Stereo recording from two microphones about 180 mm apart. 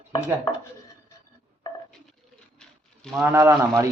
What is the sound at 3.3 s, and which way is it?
Speech, 15° right (ahead or behind).